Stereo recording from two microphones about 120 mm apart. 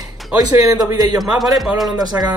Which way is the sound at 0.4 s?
35° right (ahead or behind).